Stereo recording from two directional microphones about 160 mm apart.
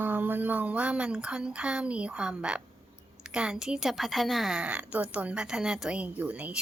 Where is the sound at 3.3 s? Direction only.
5° right (ahead or behind).